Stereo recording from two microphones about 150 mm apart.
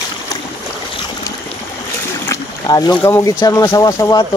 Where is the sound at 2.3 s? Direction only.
25° left (ahead or behind).